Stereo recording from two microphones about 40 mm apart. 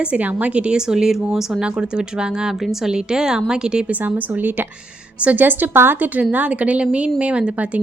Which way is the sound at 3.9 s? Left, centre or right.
Right.